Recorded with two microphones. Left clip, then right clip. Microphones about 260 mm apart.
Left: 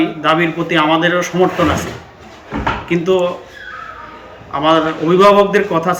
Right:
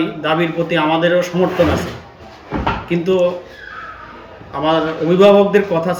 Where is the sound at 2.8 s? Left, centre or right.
Centre.